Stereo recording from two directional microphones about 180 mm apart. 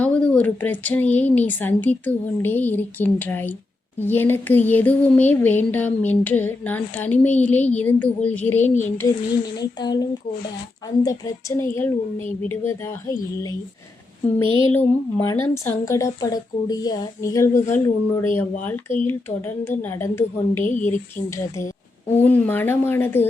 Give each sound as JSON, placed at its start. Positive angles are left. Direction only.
{"t": 0.0, "sound": "speech", "side_deg": 5}
{"t": 9.6, "sound": "speech", "side_deg": 20}
{"t": 20.7, "sound": "speech", "side_deg": 45}
{"t": 22.2, "sound": "speech", "side_deg": 10}